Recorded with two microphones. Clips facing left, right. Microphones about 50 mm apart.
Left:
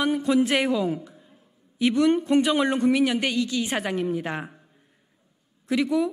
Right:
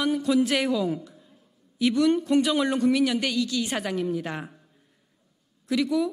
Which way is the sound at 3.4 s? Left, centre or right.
Left.